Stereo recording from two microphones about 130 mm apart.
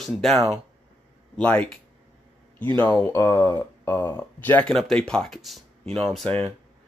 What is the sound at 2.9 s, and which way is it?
Speech, 25° left (ahead or behind).